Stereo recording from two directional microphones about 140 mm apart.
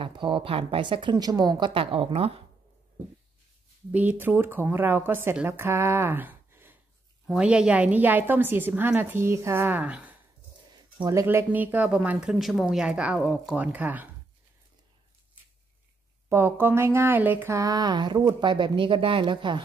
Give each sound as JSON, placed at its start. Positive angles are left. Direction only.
{"t": 0.0, "sound": "a woman's voice", "side_deg": -40}
{"t": 3.9, "sound": "speech", "side_deg": -10}
{"t": 11.1, "sound": "speech", "side_deg": -20}
{"t": 16.3, "sound": "speech", "side_deg": -15}